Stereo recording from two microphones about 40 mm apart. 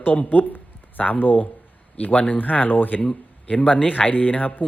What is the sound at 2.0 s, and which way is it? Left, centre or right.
Speech, left.